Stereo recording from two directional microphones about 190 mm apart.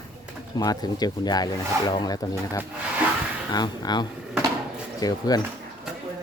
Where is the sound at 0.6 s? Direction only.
20° left (ahead or behind).